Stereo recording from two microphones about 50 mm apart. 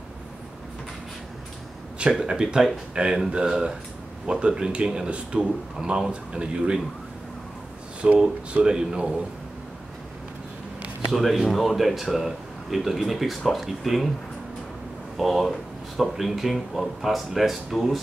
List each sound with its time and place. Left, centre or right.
2.0 s speech: centre
2.9 s speech: centre
8.0 s speech: centre
11.1 s speech: centre
15.1 s speech: centre